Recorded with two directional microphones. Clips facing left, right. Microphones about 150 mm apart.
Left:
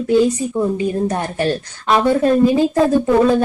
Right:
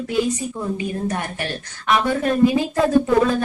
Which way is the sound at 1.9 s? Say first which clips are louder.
Left 5 dB; 25° left (ahead or behind).